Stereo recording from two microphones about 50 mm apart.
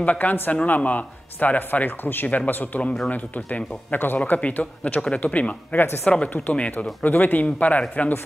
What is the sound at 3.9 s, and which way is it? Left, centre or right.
A man's voice, left.